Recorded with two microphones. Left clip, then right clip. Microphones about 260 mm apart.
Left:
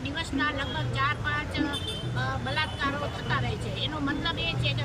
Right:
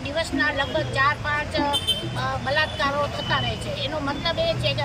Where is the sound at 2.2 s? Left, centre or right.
Centre.